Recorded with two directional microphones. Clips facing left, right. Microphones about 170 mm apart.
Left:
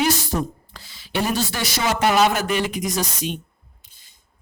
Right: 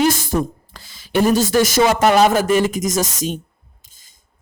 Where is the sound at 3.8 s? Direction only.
45° right (ahead or behind).